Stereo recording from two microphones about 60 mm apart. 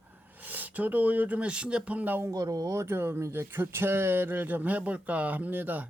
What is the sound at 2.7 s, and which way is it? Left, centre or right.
Speech, right.